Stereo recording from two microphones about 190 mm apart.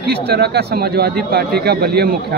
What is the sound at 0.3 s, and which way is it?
A man's voice, 60° right (ahead or behind).